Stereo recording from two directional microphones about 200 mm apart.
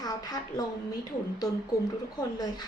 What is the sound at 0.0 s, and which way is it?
Speech, 20° left (ahead or behind).